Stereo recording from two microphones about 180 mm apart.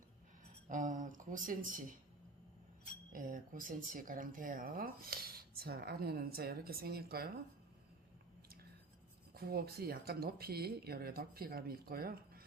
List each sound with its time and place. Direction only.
0.7 s speech: 45° right (ahead or behind)
3.1 s speech: 50° right (ahead or behind)
9.3 s speech: 55° right (ahead or behind)